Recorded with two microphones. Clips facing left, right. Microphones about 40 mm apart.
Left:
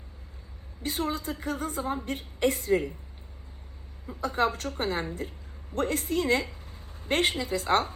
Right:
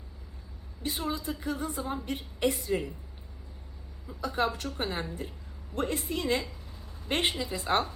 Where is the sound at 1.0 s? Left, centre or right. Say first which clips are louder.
Left 1 dB; left.